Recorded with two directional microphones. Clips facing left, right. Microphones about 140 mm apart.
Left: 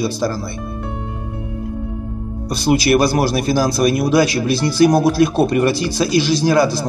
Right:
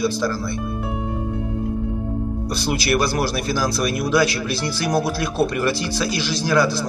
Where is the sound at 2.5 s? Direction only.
15° left (ahead or behind).